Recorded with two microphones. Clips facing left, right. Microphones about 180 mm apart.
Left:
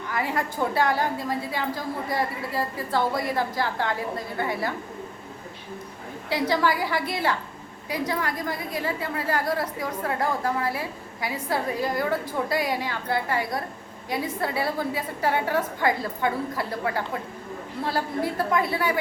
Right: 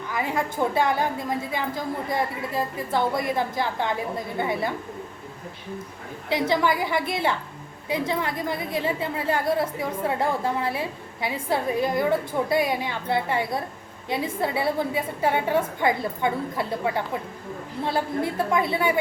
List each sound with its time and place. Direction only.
0.1 s a woman's voice: 20° right (ahead or behind)
6.3 s a woman's voice: 20° right (ahead or behind)